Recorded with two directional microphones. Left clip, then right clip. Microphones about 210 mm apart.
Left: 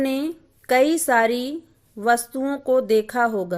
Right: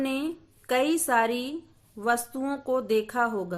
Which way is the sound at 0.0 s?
25° left (ahead or behind).